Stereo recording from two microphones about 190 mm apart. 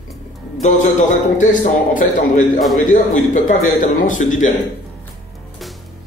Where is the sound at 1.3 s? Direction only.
45° left (ahead or behind).